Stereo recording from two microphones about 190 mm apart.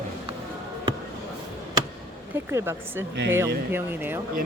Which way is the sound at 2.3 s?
15° right (ahead or behind).